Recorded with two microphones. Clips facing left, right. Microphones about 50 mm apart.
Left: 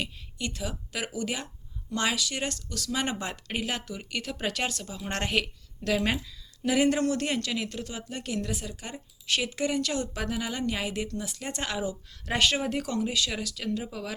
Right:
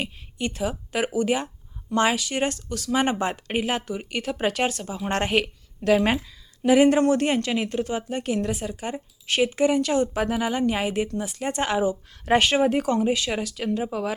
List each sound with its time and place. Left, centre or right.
0.0 s speech: right